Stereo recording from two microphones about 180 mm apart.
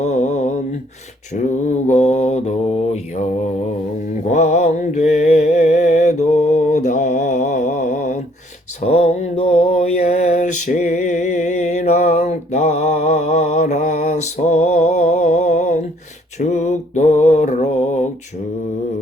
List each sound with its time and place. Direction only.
0.0 s mantra: 40° left (ahead or behind)
4.3 s mantra: 40° left (ahead or behind)